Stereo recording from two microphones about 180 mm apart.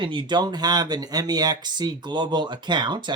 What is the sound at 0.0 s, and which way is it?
Speech, 25° right (ahead or behind).